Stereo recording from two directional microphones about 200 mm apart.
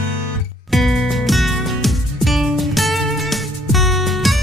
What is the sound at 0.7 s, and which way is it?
Music, centre (ahead or behind).